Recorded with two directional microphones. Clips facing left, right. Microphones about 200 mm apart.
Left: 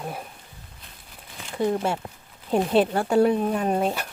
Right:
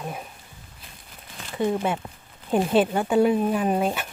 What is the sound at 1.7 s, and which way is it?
Speech, 5° right (ahead or behind).